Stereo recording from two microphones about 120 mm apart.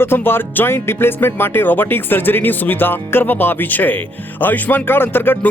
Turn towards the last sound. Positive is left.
turn(degrees=15)  # may be behind; listen again after turning